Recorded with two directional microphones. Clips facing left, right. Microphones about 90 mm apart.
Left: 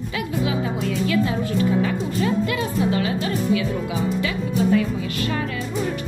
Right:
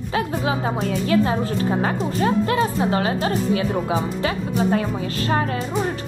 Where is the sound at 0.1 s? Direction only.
40° right (ahead or behind).